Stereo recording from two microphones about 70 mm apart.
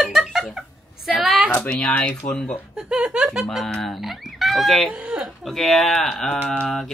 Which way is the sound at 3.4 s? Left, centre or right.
Centre.